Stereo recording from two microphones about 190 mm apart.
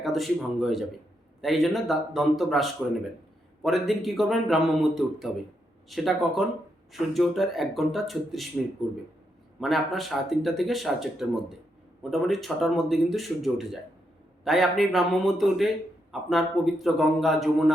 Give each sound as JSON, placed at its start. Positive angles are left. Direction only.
{"t": 0.0, "sound": "speech", "side_deg": 0}
{"t": 9.6, "sound": "speech", "side_deg": 0}